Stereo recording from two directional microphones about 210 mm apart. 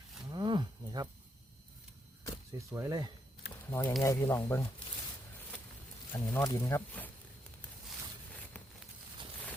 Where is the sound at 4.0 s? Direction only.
10° left (ahead or behind).